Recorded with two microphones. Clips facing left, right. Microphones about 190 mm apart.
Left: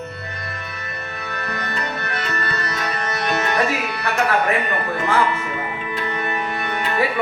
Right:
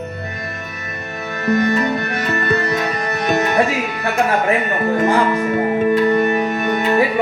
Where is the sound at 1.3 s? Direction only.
45° right (ahead or behind).